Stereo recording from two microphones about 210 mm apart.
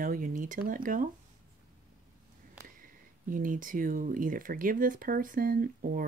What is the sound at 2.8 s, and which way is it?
Speech, 40° right (ahead or behind).